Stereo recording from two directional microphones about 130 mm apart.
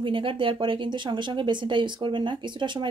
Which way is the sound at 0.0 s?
40° right (ahead or behind).